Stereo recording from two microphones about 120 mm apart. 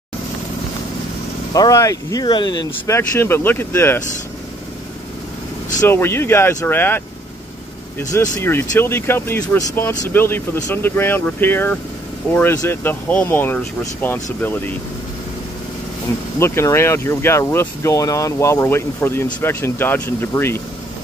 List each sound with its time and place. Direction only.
1.5 s speech: 30° left (ahead or behind)
2.2 s speech: 40° left (ahead or behind)
3.0 s speech: 20° left (ahead or behind)
5.9 s speech: 20° left (ahead or behind)
8.1 s speech: 20° left (ahead or behind)
16.3 s speech: 20° left (ahead or behind)